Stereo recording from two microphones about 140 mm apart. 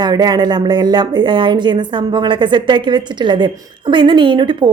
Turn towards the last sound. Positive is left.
turn(degrees=-35)  # may be behind; listen again after turning